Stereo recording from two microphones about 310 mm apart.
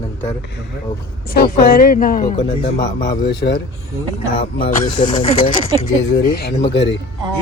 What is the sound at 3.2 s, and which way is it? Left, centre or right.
Speech, left.